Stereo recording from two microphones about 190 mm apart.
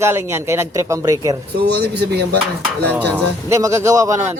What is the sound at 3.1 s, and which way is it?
A man's voice, 15° right (ahead or behind).